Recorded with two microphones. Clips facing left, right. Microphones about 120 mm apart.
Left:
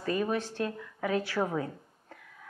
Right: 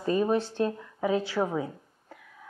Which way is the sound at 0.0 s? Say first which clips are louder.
Right 5 dB; 25° right (ahead or behind).